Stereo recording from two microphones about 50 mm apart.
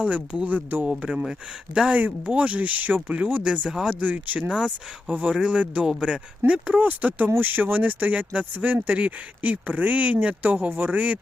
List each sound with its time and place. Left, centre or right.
0.0 s speech: right
1.1 s speech: centre
2.0 s speech: right